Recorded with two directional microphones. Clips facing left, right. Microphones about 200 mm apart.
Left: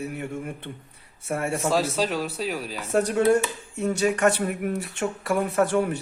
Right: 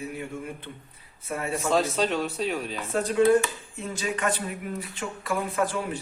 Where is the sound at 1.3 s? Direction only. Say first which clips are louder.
Left 3 dB; 70° left (ahead or behind).